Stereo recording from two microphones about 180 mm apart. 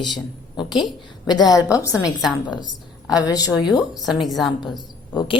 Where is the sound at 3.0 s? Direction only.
20° left (ahead or behind).